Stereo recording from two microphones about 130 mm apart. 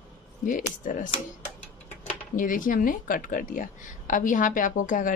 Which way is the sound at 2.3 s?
90° left.